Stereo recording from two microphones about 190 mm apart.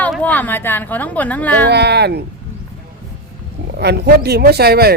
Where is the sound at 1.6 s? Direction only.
60° right (ahead or behind).